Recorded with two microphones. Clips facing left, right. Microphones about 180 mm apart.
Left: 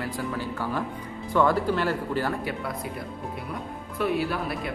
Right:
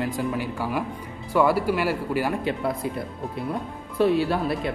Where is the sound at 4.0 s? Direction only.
30° right (ahead or behind).